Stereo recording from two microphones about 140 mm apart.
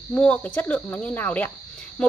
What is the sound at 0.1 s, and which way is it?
A woman's voice, 10° left (ahead or behind).